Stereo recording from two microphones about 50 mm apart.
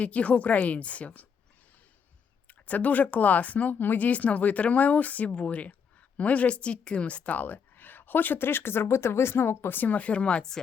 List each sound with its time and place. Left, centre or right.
0.0 s a woman's voice: left
2.5 s speech: left; by 10.6 s centre